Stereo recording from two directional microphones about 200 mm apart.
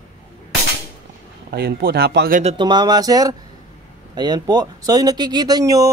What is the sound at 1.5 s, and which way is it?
Speech, 50° right (ahead or behind).